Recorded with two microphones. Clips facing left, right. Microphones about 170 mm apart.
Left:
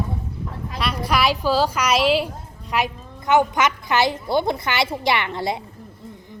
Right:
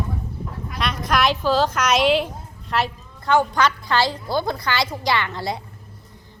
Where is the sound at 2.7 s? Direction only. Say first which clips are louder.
Even; 15° left (ahead or behind).